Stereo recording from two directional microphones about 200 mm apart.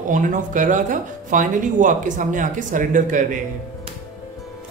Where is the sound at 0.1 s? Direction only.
40° right (ahead or behind).